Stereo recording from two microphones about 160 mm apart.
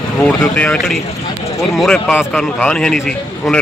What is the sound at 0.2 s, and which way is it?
A man's voice, 10° left (ahead or behind).